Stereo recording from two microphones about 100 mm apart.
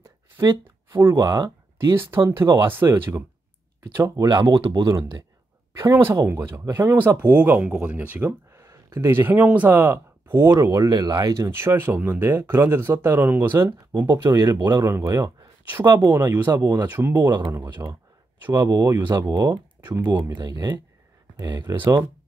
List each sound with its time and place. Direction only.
0.4 s speech: 25° right (ahead or behind)
1.1 s speech: 40° right (ahead or behind)
2.0 s speech: 25° right (ahead or behind); by 5.2 s 40° right (ahead or behind)
5.8 s speech: 30° right (ahead or behind)
14.0 s speech: 35° right (ahead or behind)
14.9 s speech: 30° right (ahead or behind)
17.0 s speech: 20° right (ahead or behind)
18.5 s speech: 40° right (ahead or behind)